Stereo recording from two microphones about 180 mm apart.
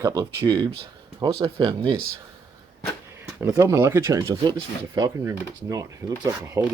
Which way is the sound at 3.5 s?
15° right (ahead or behind).